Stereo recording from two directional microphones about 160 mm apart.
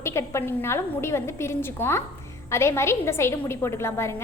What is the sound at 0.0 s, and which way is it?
A woman's voice, 15° left (ahead or behind).